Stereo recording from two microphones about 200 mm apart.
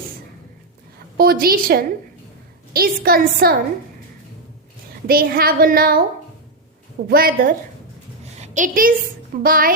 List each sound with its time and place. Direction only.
1.1 s a woman's voice: 50° right (ahead or behind)
5.0 s a woman's voice: 50° right (ahead or behind)
7.1 s a woman's voice: 45° right (ahead or behind)
8.2 s a sound: 35° right (ahead or behind)
9.4 s a woman's voice: 45° right (ahead or behind)